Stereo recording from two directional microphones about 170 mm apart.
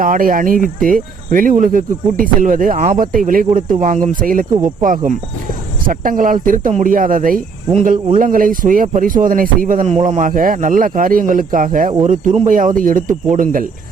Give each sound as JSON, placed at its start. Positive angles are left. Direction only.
{"t": 0.0, "sound": "speech", "side_deg": -55}